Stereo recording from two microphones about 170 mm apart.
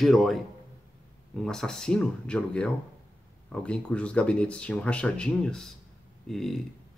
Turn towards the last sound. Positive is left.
turn(degrees=0)  # may be behind; listen again after turning